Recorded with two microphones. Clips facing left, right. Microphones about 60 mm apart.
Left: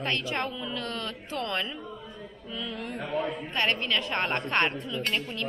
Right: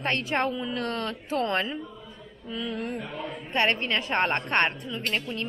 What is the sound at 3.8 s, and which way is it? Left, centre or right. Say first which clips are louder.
Speech: right 3 dB; right.